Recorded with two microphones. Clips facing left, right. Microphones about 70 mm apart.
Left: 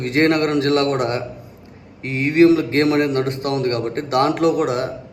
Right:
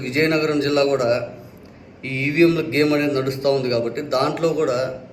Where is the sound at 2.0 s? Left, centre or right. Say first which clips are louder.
Left 3 dB; left.